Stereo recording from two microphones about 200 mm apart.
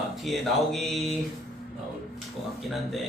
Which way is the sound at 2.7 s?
Centre (ahead or behind).